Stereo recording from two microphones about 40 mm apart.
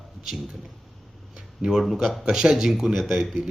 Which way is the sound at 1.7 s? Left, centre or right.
Centre.